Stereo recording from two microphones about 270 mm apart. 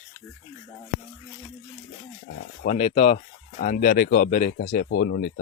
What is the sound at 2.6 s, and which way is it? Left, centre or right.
Speech, left.